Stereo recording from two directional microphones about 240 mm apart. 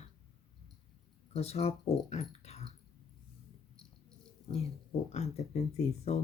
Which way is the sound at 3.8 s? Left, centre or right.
Centre.